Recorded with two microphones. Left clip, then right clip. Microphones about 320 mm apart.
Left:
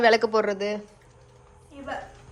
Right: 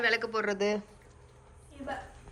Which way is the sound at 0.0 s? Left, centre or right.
Centre.